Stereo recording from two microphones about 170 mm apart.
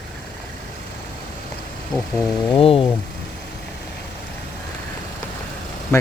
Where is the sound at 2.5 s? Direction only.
30° left (ahead or behind).